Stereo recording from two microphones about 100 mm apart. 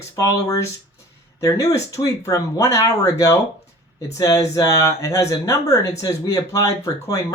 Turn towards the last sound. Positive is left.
turn(degrees=35)  # may be behind; listen again after turning